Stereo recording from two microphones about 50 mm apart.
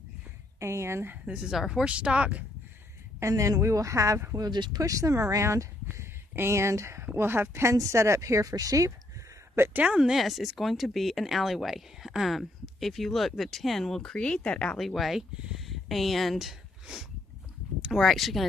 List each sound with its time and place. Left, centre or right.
0.6 s speech: right
1.4 s speech: centre
1.9 s speech: right
3.2 s speech: right
5.9 s speech: right
7.2 s speech: right
9.8 s speech: centre
10.1 s speech: centre; by 14.8 s left
14.8 s speech: centre
16.8 s a sound: centre
17.9 s speech: centre